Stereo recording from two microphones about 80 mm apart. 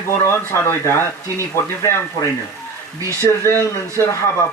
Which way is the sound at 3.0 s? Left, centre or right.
Left.